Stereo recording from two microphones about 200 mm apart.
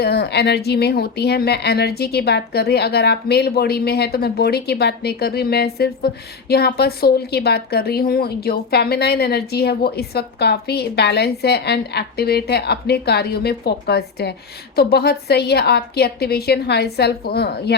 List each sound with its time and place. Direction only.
0.0 s a woman's voice: 55° left (ahead or behind)